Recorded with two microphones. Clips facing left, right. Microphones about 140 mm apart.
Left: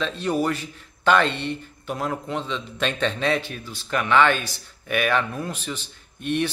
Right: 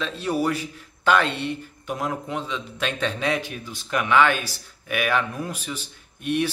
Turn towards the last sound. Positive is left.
turn(degrees=-10)  # may be behind; listen again after turning